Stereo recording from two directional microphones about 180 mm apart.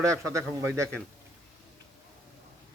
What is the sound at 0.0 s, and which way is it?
Speech, 15° right (ahead or behind).